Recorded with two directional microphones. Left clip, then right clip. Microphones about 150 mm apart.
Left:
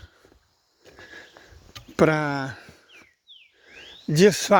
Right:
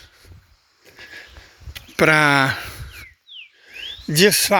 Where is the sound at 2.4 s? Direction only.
25° right (ahead or behind).